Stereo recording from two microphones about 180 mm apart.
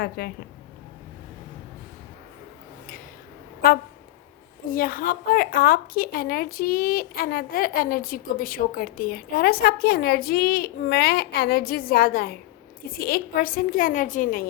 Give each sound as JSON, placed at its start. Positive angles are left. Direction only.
{"t": 0.2, "sound": "a woman's voice", "side_deg": 60}
{"t": 3.6, "sound": "a woman's voice", "side_deg": 55}